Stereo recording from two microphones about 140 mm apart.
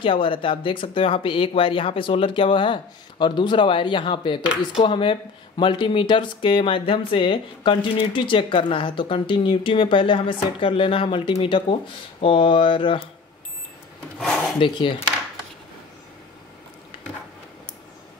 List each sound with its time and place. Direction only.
0.0 s speech: 40° left (ahead or behind)
14.1 s speech: 5° left (ahead or behind)
14.6 s speech: 35° left (ahead or behind)